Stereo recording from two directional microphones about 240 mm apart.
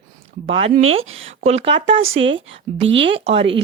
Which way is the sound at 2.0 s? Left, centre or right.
Right.